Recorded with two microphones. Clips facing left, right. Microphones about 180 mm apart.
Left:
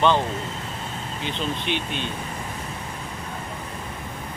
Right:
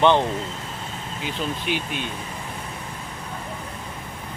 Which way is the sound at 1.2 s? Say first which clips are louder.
Even; 5° right (ahead or behind).